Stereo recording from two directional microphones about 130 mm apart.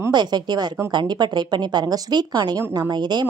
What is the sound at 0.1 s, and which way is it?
A woman's voice, 35° right (ahead or behind).